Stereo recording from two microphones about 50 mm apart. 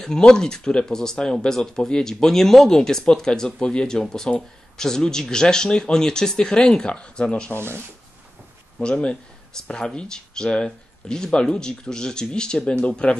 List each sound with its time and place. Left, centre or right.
0.0 s speech: centre
7.5 s speech: right
8.7 s speech: left